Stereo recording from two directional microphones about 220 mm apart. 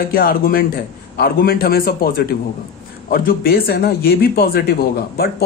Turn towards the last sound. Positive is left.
turn(degrees=45)  # may be behind; listen again after turning